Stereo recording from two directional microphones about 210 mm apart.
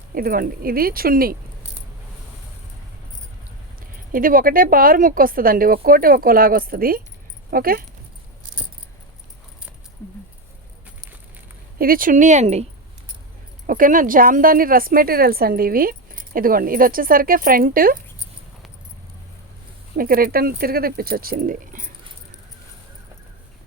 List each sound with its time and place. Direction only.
0.1 s speech: 45° right (ahead or behind)
3.8 s speech: 40° right (ahead or behind)
11.8 s speech: 40° right (ahead or behind)
13.7 s speech: 40° right (ahead or behind)
20.0 s speech: 45° right (ahead or behind)